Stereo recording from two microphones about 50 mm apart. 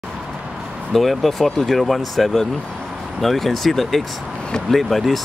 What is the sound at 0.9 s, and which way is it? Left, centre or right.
Speech, centre.